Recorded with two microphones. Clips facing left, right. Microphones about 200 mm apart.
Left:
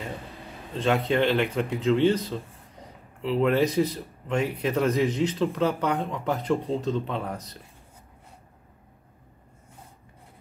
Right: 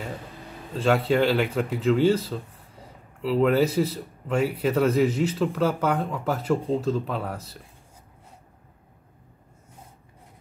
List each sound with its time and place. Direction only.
0.7 s speech: 5° right (ahead or behind)